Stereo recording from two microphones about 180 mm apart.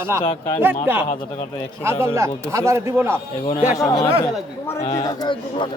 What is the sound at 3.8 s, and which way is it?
Speech, 20° left (ahead or behind).